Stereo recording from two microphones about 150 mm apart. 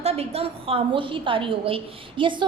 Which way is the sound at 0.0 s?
45° right (ahead or behind).